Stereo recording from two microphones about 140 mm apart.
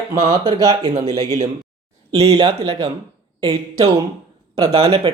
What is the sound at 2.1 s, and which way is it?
Speech, 40° right (ahead or behind).